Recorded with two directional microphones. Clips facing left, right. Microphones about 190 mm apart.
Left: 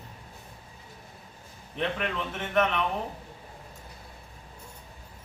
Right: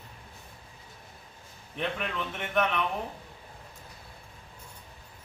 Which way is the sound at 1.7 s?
Centre (ahead or behind).